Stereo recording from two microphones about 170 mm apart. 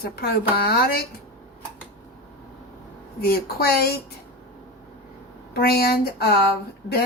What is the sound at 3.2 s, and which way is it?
Speech, 65° left (ahead or behind).